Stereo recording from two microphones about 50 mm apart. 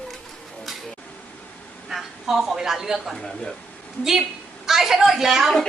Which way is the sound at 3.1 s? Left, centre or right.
Centre.